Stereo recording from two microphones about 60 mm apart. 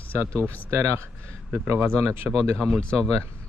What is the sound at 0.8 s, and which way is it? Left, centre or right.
Speech, right.